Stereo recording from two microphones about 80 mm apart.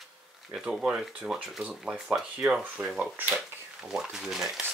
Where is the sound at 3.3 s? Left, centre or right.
Centre.